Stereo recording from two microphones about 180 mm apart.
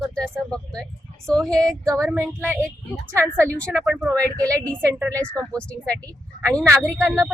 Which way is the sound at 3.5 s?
5° left (ahead or behind).